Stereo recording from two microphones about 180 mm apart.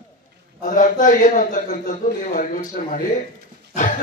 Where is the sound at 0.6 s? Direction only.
45° left (ahead or behind).